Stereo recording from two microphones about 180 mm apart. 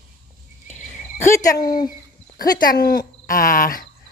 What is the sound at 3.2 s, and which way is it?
Cricket, 50° left (ahead or behind).